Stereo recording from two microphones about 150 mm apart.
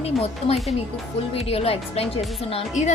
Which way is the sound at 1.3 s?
40° left (ahead or behind).